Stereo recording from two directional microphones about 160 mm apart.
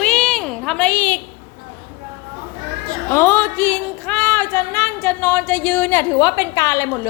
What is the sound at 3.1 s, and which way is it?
Speech, 15° left (ahead or behind).